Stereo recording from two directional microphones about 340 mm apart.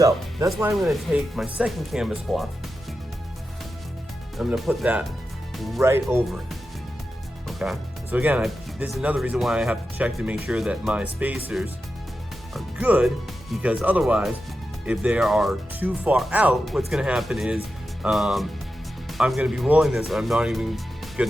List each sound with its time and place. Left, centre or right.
0.0 s speech: centre
4.4 s speech: centre